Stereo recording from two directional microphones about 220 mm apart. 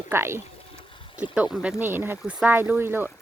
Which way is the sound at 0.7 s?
25° left (ahead or behind).